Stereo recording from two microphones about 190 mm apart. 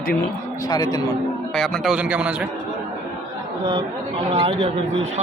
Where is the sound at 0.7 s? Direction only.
20° left (ahead or behind).